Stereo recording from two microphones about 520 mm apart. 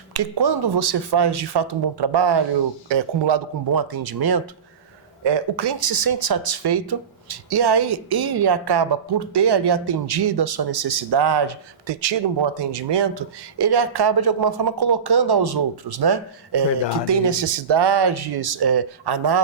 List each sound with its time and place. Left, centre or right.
0.1 s speech: right